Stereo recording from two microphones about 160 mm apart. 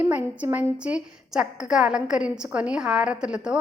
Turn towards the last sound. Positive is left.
turn(degrees=-5)  # may be behind; listen again after turning